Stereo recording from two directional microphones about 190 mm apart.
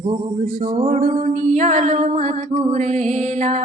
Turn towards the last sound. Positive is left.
turn(degrees=-40)  # may be behind; listen again after turning